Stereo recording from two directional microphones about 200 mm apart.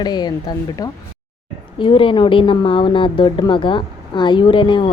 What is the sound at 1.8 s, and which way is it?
A woman's voice, 25° left (ahead or behind).